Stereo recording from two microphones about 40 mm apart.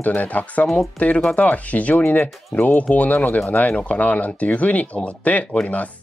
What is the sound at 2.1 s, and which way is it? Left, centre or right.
Speech, left.